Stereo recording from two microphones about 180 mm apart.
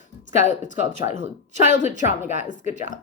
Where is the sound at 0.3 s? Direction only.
45° left (ahead or behind).